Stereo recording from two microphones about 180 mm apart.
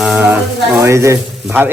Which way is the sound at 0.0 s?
10° right (ahead or behind).